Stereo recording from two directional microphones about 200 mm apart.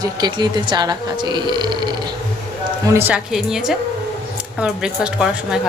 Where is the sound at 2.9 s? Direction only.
10° right (ahead or behind).